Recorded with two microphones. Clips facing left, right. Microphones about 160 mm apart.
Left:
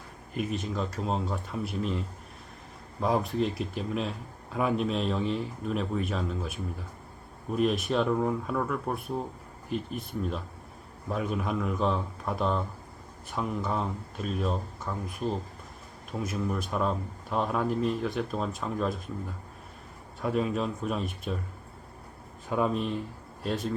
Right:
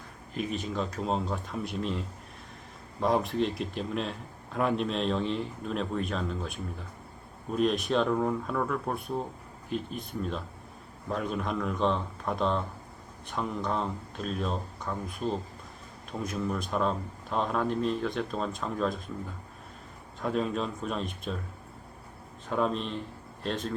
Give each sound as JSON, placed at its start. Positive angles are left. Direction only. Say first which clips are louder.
{"t": 0.5, "sound": "speech", "louder": "even", "side_deg": 0}
{"t": 16.2, "sound": "speech", "louder": "even", "side_deg": 5}
{"t": 20.2, "sound": "speech", "louder": "left 1 dB", "side_deg": 5}
{"t": 22.4, "sound": "speech", "louder": "left 1 dB", "side_deg": 10}